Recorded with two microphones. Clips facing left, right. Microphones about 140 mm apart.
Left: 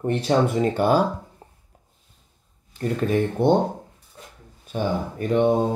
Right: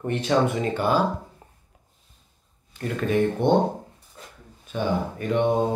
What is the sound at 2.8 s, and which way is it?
Speech, 40° left (ahead or behind).